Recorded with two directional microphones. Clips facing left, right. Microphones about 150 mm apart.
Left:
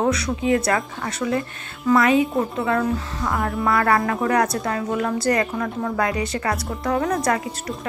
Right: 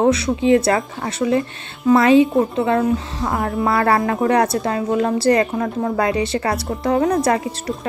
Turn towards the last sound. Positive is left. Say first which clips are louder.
# right 4 dB
turn(degrees=-25)  # may be behind; listen again after turning